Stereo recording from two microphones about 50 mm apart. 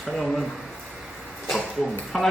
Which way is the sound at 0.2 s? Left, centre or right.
Centre.